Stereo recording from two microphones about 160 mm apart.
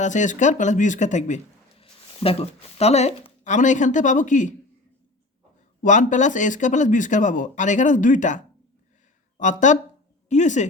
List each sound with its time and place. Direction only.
0.0 s speech: 50° left (ahead or behind)
1.8 s speech: 35° left (ahead or behind)
5.8 s speech: 50° left (ahead or behind)
9.4 s speech: 50° left (ahead or behind)